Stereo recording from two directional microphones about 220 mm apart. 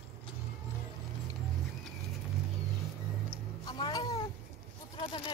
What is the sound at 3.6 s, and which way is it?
Cat, 20° left (ahead or behind).